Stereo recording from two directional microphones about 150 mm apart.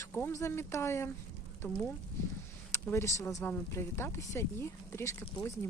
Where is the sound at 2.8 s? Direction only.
20° left (ahead or behind).